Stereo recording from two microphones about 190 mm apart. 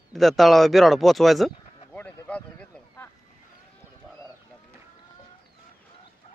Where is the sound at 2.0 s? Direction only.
10° left (ahead or behind).